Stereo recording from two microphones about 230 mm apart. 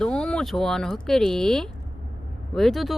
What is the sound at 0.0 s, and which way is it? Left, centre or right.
Speech, centre.